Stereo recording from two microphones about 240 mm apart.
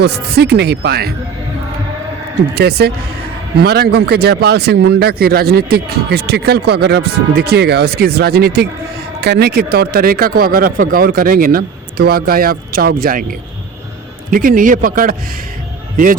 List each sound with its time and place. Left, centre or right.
0.0 s speech: right
2.6 s speech: right
14.3 s speech: right